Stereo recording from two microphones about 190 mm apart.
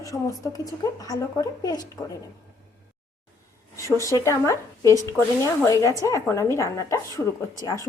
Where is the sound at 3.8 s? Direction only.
15° left (ahead or behind).